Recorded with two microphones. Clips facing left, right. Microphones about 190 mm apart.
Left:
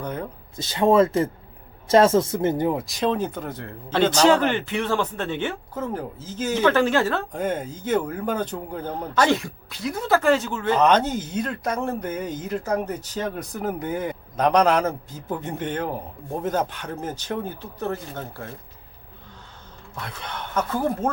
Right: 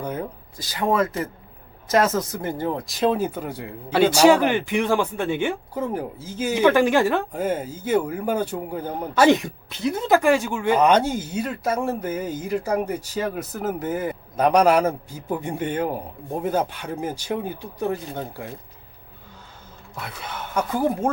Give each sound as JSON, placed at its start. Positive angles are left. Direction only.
{"t": 0.0, "sound": "speech", "side_deg": -10}
{"t": 0.5, "sound": "speech", "side_deg": 25}
{"t": 2.7, "sound": "a man's voice", "side_deg": 0}
{"t": 20.0, "sound": "a man's voice", "side_deg": -5}